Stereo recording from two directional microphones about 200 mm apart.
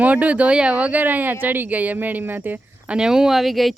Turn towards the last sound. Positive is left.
turn(degrees=0)  # may be behind; listen again after turning